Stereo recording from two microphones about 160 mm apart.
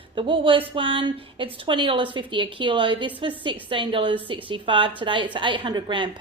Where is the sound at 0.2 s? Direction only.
35° right (ahead or behind).